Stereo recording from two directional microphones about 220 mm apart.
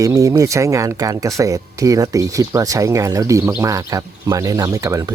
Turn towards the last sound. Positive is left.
turn(degrees=-15)  # may be behind; listen again after turning